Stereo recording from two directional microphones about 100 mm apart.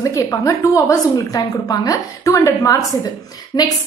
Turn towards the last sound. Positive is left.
turn(degrees=40)  # may be behind; listen again after turning